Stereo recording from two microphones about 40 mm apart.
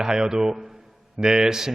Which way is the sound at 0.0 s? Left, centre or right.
Centre.